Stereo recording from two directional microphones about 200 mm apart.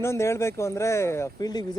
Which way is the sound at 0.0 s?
15° left (ahead or behind).